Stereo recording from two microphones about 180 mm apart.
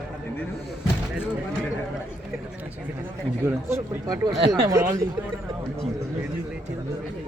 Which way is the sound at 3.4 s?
15° right (ahead or behind).